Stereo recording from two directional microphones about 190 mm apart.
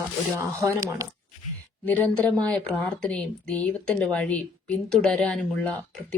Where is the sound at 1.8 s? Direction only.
10° left (ahead or behind).